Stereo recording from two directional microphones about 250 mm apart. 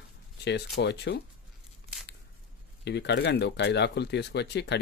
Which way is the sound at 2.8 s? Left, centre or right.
Left.